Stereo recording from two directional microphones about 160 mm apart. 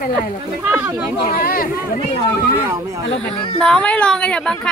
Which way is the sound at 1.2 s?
65° left (ahead or behind).